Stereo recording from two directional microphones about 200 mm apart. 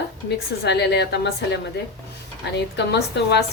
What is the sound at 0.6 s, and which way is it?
A woman's voice, 60° left (ahead or behind).